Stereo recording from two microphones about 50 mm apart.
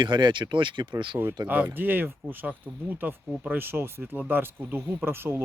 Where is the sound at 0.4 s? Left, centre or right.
Right.